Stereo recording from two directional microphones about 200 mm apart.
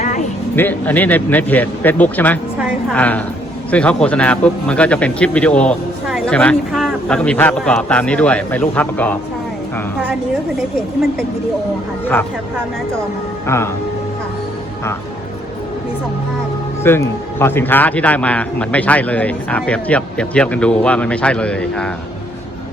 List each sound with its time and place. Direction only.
0.0 s music: 35° left (ahead or behind)
0.5 s a man's voice: 10° left (ahead or behind)
16.8 s a man's voice: 10° left (ahead or behind)